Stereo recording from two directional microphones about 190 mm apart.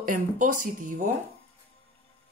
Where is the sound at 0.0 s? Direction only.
45° right (ahead or behind).